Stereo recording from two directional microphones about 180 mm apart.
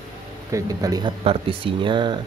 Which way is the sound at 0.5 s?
20° right (ahead or behind).